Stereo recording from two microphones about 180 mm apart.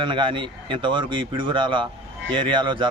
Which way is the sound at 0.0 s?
25° right (ahead or behind).